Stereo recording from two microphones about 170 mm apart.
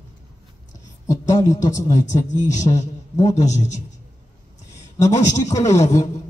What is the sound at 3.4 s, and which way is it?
Speech, 45° left (ahead or behind).